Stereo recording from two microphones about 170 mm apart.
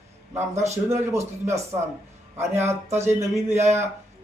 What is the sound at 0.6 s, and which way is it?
Speech, 40° right (ahead or behind).